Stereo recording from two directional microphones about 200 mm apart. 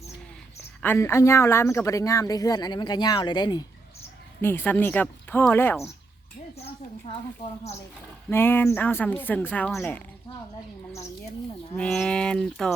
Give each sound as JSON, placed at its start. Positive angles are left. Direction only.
{"t": 0.8, "sound": "speech", "side_deg": 10}
{"t": 4.4, "sound": "speech", "side_deg": 10}
{"t": 7.1, "sound": "speech", "side_deg": 40}
{"t": 8.3, "sound": "speech", "side_deg": 10}
{"t": 11.8, "sound": "speech", "side_deg": 5}